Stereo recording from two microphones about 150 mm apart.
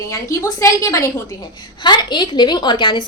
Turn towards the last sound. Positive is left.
turn(degrees=35)  # may be behind; listen again after turning